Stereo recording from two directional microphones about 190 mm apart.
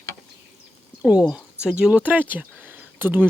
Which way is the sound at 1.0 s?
5° right (ahead or behind).